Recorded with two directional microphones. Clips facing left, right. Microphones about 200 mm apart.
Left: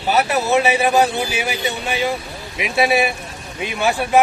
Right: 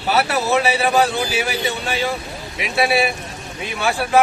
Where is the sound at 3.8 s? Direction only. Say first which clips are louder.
Left 1 dB; 20° left (ahead or behind).